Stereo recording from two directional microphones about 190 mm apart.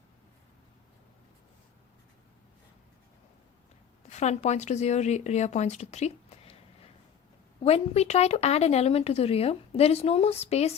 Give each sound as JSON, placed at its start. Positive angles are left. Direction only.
{"t": 4.1, "sound": "speech", "side_deg": 35}
{"t": 7.6, "sound": "speech", "side_deg": 35}